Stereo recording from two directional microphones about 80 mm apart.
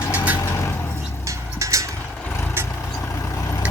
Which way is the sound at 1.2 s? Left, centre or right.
Right.